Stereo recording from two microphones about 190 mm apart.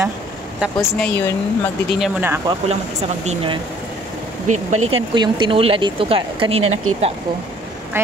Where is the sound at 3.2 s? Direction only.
30° right (ahead or behind).